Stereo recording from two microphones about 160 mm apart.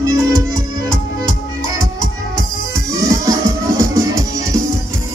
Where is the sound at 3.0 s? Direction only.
20° right (ahead or behind).